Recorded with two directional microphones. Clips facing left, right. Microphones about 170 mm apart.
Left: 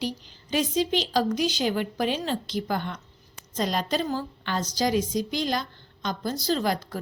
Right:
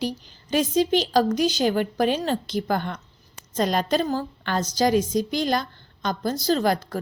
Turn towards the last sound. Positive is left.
turn(degrees=-45)  # may be behind; listen again after turning